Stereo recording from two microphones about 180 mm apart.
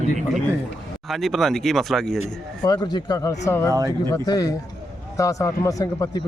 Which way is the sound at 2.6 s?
20° left (ahead or behind).